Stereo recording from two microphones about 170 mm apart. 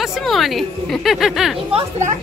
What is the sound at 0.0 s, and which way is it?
A woman's voice, centre (ahead or behind).